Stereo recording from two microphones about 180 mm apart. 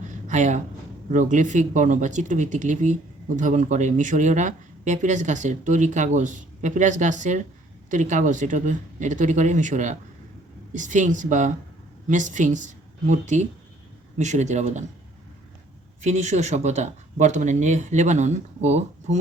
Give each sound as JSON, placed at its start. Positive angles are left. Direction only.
{"t": 0.3, "sound": "speech", "side_deg": -40}
{"t": 16.0, "sound": "speech", "side_deg": -40}